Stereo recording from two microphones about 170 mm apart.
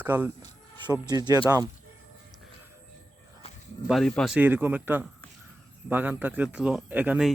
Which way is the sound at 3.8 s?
Centre (ahead or behind).